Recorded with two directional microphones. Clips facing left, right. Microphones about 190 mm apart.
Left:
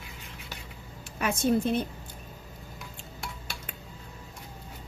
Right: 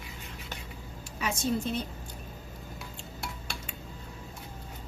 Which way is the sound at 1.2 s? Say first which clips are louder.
Left 5 dB; 55° left (ahead or behind).